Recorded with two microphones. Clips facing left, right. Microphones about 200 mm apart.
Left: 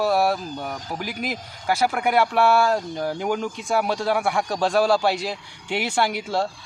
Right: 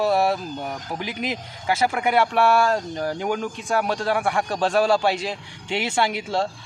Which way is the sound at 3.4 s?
10° left (ahead or behind).